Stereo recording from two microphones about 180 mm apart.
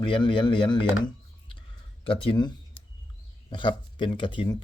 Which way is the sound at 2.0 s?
30° left (ahead or behind).